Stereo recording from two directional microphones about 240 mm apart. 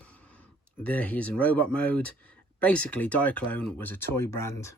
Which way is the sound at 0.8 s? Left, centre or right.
Centre.